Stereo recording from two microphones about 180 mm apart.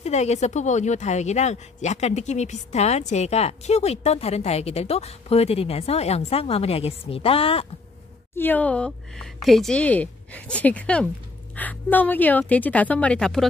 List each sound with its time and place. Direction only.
0.0 s a woman's voice: 40° left (ahead or behind)
8.4 s speech: 10° left (ahead or behind)